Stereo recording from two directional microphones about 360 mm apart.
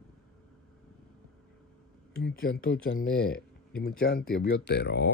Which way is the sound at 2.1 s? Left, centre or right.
Left.